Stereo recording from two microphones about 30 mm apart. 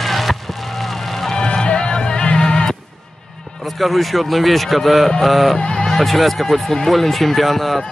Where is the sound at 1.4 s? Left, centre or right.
Left.